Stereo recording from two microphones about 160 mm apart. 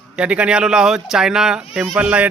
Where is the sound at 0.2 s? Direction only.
5° right (ahead or behind).